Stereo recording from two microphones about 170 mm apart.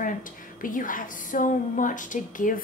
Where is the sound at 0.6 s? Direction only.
55° left (ahead or behind).